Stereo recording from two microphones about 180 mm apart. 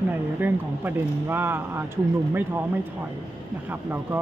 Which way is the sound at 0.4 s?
10° right (ahead or behind).